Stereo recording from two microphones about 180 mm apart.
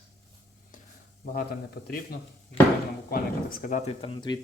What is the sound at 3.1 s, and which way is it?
Speech, 50° left (ahead or behind).